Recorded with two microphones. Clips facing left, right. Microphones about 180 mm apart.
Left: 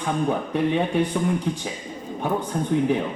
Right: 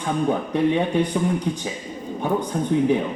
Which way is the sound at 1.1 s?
15° right (ahead or behind).